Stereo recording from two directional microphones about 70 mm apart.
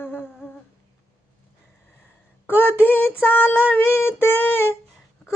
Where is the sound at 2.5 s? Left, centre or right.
Left.